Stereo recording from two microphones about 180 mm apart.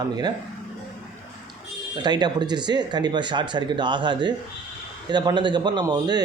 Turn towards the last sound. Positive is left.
turn(degrees=-20)  # may be behind; listen again after turning